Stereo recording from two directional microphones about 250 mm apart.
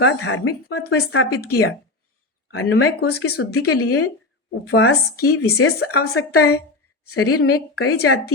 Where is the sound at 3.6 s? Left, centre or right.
Left.